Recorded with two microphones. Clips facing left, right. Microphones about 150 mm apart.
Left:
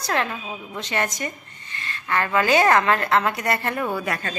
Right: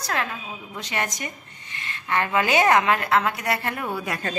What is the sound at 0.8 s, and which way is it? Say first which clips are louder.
A woman's voice: left 3 dB; 10° right (ahead or behind).